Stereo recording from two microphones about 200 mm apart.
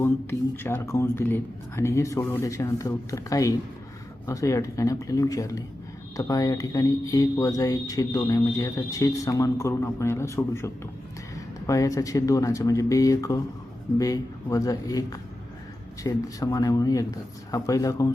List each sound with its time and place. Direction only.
0.0 s speech: 10° left (ahead or behind)